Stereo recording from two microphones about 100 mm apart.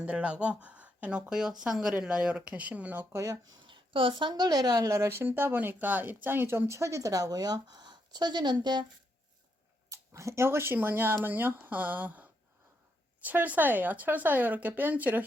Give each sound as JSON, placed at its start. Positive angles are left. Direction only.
{"t": 0.0, "sound": "speech", "side_deg": -10}
{"t": 3.2, "sound": "speech", "side_deg": -35}
{"t": 3.7, "sound": "a woman's voice", "side_deg": -60}
{"t": 4.4, "sound": "speech", "side_deg": -40}
{"t": 9.9, "sound": "speech", "side_deg": -30}